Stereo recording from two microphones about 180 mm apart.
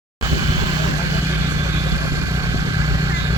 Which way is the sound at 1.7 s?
15° right (ahead or behind).